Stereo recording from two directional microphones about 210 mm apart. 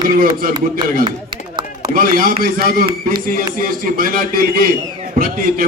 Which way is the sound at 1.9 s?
45° right (ahead or behind).